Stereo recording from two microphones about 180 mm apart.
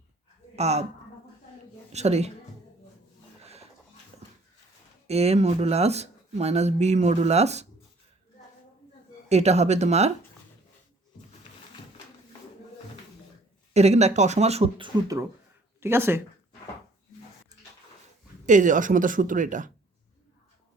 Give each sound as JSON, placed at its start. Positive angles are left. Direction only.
{"t": 0.5, "sound": "speech", "side_deg": -35}
{"t": 1.9, "sound": "a woman's voice", "side_deg": -40}
{"t": 3.4, "sound": "music", "side_deg": -35}
{"t": 5.0, "sound": "speech", "side_deg": -35}
{"t": 9.3, "sound": "speech", "side_deg": -35}
{"t": 13.7, "sound": "speech", "side_deg": -40}
{"t": 15.0, "sound": "speech", "side_deg": -20}
{"t": 18.4, "sound": "speech", "side_deg": -45}